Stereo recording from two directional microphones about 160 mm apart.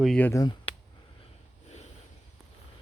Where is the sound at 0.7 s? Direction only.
35° left (ahead or behind).